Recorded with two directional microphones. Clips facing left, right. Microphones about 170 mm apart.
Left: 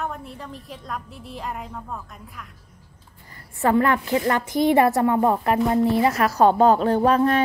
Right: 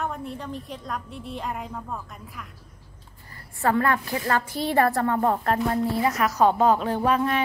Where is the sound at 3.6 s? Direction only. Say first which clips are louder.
Left 3 dB; 20° left (ahead or behind).